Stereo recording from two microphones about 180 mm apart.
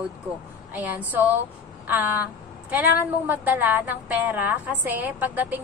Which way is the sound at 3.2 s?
10° right (ahead or behind).